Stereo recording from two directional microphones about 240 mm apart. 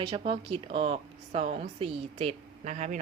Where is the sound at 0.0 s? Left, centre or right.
Right.